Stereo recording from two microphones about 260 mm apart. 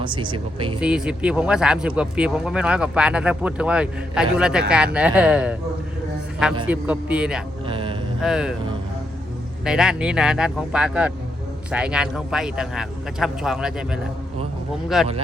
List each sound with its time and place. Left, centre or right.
0.0 s speech: centre
0.8 s speech: centre
6.7 s speech: centre
7.7 s mantra: centre
8.2 s speech: centre
9.6 s speech: centre